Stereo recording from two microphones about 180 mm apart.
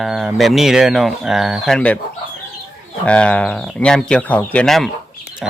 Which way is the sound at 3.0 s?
5° left (ahead or behind).